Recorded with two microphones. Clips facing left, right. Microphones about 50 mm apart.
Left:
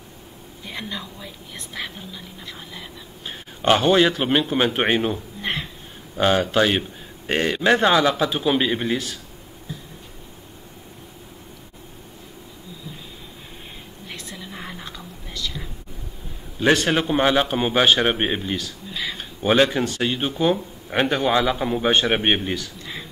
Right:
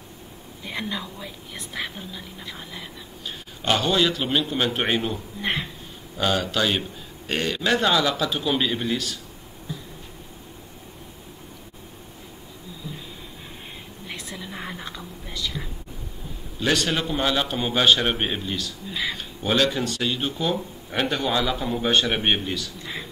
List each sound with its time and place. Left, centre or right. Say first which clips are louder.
0.7 s a woman's voice: right 2 dB; centre
3.3 s speech: left 5 dB; left
5.4 s speech: right 3 dB; centre
6.1 s speech: left 5 dB; left
14.3 s whispering: right 2 dB; centre
16.5 s speech: left 5 dB; left
18.0 s speech: left 3 dB; centre
18.9 s speech: right 2 dB; centre
19.1 s speech: left 6 dB; left